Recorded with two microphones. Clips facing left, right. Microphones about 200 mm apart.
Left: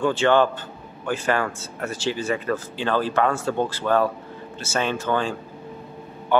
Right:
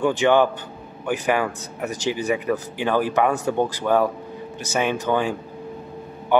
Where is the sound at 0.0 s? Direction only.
15° right (ahead or behind).